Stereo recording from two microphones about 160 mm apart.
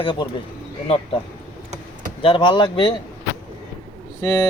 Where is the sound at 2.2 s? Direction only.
30° left (ahead or behind).